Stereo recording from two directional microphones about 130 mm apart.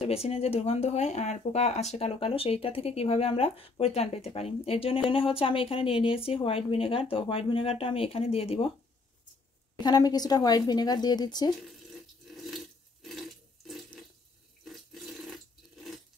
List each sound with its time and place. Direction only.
0.0 s speech: 50° left (ahead or behind)
9.8 s speech: 30° left (ahead or behind)
12.3 s water: centre (ahead or behind)